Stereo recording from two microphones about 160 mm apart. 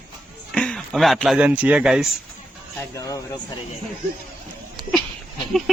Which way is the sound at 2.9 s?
20° left (ahead or behind).